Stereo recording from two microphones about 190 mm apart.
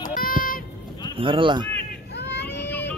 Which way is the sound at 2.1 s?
65° left (ahead or behind).